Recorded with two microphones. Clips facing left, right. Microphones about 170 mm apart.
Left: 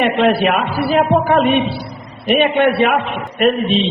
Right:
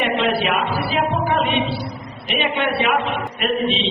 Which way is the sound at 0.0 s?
50° left (ahead or behind).